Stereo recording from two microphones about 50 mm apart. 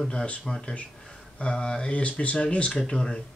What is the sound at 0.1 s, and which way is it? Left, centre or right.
A man's voice, centre.